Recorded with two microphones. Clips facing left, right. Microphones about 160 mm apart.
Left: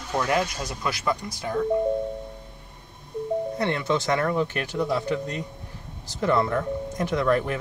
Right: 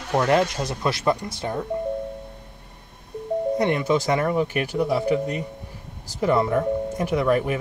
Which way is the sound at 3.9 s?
10° right (ahead or behind).